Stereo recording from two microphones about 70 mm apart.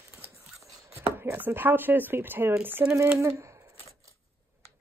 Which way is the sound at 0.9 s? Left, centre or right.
Right.